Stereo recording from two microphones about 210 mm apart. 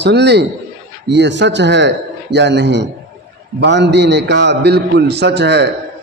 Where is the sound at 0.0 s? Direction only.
55° right (ahead or behind).